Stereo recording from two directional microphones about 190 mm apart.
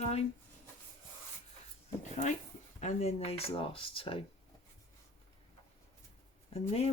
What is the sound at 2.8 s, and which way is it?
Speech, 35° left (ahead or behind).